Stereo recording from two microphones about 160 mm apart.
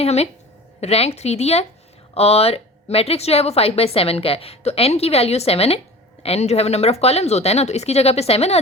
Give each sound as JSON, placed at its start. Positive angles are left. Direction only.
{"t": 0.0, "sound": "a woman's voice", "side_deg": 40}